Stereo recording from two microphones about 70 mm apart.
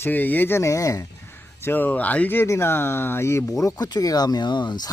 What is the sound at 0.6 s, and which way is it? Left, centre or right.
Speech, left.